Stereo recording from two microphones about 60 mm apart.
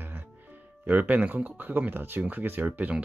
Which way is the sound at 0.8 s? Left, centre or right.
Right.